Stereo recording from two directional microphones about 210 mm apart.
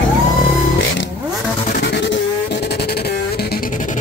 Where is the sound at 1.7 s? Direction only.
50° left (ahead or behind).